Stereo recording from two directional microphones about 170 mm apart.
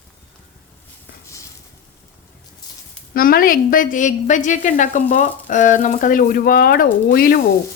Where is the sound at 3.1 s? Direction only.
55° left (ahead or behind).